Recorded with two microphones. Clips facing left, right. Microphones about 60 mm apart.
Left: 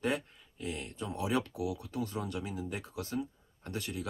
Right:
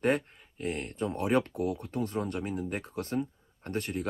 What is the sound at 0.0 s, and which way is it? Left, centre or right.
Speech, right.